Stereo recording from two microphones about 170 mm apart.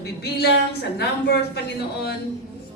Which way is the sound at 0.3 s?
70° left (ahead or behind).